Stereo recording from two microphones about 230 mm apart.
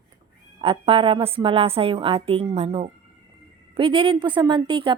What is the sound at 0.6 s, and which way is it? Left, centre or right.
A woman's voice, right.